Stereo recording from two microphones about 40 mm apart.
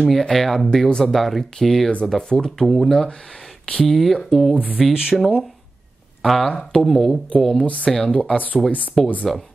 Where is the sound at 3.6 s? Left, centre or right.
Left.